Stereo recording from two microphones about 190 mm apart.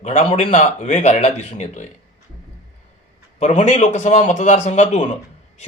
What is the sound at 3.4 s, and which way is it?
A man's voice, 40° left (ahead or behind).